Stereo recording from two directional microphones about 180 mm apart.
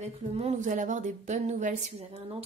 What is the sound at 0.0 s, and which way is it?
Speech, 35° right (ahead or behind).